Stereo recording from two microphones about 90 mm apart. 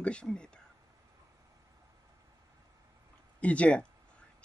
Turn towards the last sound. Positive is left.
turn(degrees=15)  # may be behind; listen again after turning